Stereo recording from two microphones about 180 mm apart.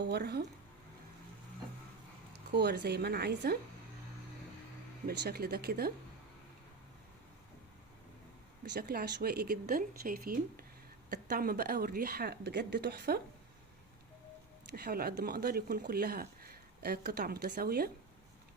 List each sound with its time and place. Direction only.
0.0 s speech: 65° right (ahead or behind)
2.5 s speech: 65° right (ahead or behind)
5.0 s speech: 60° right (ahead or behind)
8.7 s speech: 60° right (ahead or behind)
14.8 s speech: 60° right (ahead or behind)